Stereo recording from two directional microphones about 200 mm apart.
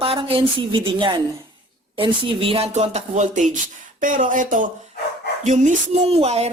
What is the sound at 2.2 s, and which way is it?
Speech, 25° right (ahead or behind).